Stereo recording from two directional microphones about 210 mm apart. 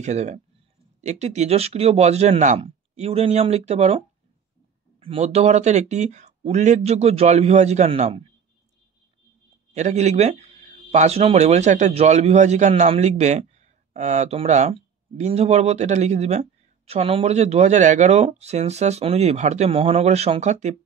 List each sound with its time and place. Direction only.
0.0 s speech: 35° right (ahead or behind)
5.0 s speech: 30° right (ahead or behind)
9.8 s speech: 35° right (ahead or behind)